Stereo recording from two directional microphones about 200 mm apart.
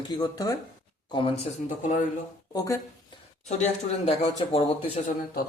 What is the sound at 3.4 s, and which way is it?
Speech, 35° left (ahead or behind).